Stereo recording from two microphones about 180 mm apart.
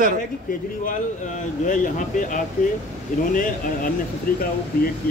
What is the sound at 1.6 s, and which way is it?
Speech, 45° left (ahead or behind).